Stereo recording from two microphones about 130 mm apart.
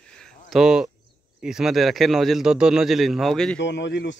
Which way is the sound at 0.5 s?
5° right (ahead or behind).